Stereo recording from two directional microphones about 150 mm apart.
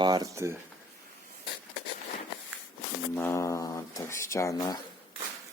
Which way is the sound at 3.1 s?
15° left (ahead or behind).